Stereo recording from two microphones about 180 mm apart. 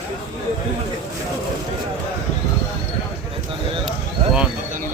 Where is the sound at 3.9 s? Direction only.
5° right (ahead or behind).